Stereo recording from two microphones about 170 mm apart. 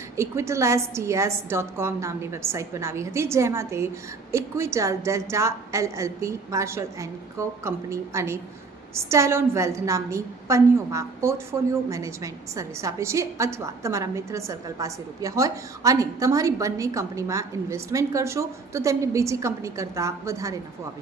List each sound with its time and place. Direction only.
0.2 s a woman's voice: 15° right (ahead or behind)